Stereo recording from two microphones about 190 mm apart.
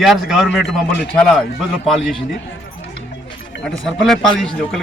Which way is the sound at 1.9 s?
Centre (ahead or behind).